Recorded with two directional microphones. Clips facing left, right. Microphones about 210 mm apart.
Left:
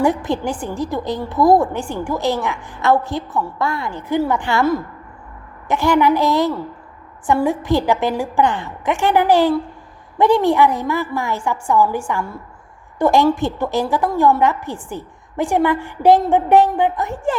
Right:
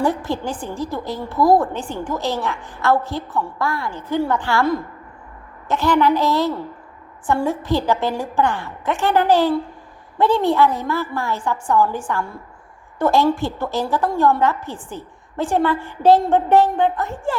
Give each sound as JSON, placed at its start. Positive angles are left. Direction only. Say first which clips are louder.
{"t": 0.0, "sound": "a woman's voice", "louder": "left 3 dB", "side_deg": 15}
{"t": 5.6, "sound": "a woman's voice", "louder": "left 2 dB", "side_deg": 15}